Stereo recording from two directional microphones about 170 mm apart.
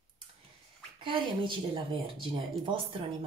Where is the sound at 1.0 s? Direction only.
30° right (ahead or behind).